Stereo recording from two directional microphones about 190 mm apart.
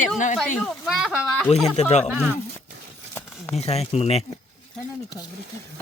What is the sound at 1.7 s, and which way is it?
Speech, 35° left (ahead or behind).